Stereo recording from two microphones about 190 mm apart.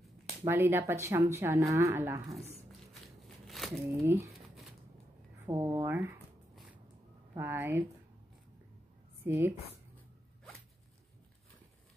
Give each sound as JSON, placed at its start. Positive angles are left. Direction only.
{"t": 0.5, "sound": "speech", "side_deg": -10}
{"t": 2.9, "sound": "a sound", "side_deg": 0}
{"t": 4.0, "sound": "speech", "side_deg": -15}
{"t": 5.4, "sound": "speech", "side_deg": -10}
{"t": 6.5, "sound": "a sound", "side_deg": 0}
{"t": 7.3, "sound": "speech", "side_deg": -10}
{"t": 9.2, "sound": "a woman's voice", "side_deg": -10}